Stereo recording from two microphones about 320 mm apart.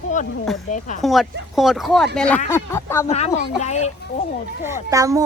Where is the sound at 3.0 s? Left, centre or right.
Centre.